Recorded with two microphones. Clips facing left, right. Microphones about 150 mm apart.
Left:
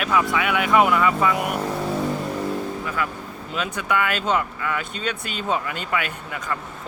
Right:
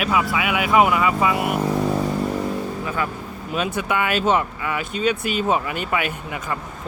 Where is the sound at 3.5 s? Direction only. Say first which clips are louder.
Right 1 dB; 20° right (ahead or behind).